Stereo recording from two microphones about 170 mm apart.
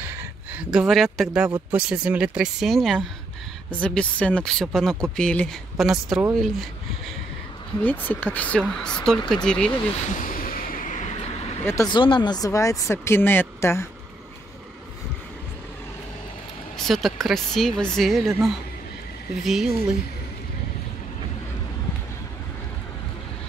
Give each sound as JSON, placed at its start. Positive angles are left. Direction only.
{"t": 0.0, "sound": "a sound", "side_deg": -10}
{"t": 1.7, "sound": "speech", "side_deg": -5}
{"t": 7.8, "sound": "speech", "side_deg": 10}
{"t": 10.0, "sound": "vehicle", "side_deg": 55}
{"t": 11.6, "sound": "speech", "side_deg": 20}
{"t": 16.7, "sound": "speech", "side_deg": 0}